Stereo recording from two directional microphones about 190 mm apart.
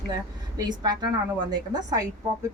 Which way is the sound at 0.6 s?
20° right (ahead or behind).